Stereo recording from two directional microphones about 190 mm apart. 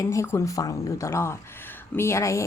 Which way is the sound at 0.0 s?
15° left (ahead or behind).